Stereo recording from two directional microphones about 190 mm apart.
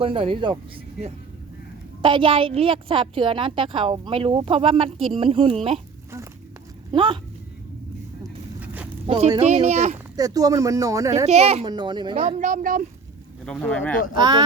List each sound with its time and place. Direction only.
0.0 s a woman's voice: 30° right (ahead or behind)
2.0 s a woman's voice: 25° right (ahead or behind)
6.9 s a woman's voice: 25° right (ahead or behind)
8.2 s vehicle: 10° right (ahead or behind)
9.0 s speech: 35° right (ahead or behind)
10.2 s speech: 20° right (ahead or behind)
11.3 s a woman's voice: 35° right (ahead or behind)
12.1 s speech: 40° right (ahead or behind)
13.4 s speech: 5° left (ahead or behind)
14.2 s a woman's voice: 20° right (ahead or behind)